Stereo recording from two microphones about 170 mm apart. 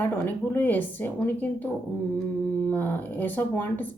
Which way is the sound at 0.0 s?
10° left (ahead or behind).